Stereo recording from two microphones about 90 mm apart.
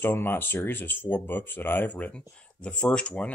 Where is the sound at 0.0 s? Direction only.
25° left (ahead or behind).